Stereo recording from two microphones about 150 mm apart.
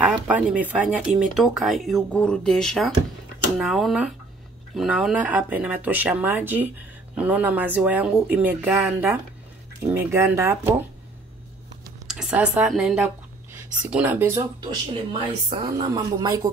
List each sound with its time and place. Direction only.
0.0 s speech: 5° right (ahead or behind)
12.1 s speech: 5° right (ahead or behind)
15.1 s speech: 30° right (ahead or behind)